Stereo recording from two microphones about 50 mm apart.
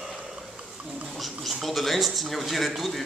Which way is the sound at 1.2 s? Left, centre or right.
Centre.